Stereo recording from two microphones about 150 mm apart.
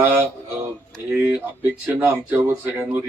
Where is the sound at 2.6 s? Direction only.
15° right (ahead or behind).